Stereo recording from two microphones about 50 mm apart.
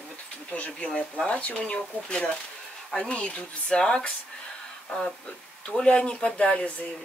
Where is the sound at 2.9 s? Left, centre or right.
Left.